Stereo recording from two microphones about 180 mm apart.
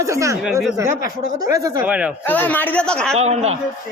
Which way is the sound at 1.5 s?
20° right (ahead or behind).